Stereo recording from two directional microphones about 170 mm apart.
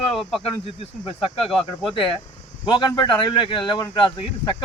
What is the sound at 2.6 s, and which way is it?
Speech, 30° left (ahead or behind).